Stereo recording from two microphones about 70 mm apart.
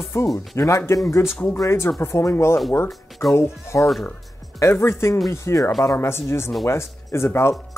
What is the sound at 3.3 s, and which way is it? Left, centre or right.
Speech, left.